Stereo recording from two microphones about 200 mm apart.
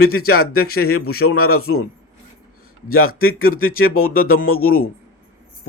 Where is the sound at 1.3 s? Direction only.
90° left.